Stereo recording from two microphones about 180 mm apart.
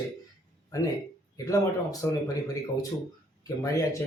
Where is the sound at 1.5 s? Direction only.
20° left (ahead or behind).